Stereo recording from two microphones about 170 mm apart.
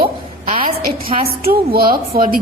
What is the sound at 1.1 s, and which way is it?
A woman's voice, 60° right (ahead or behind).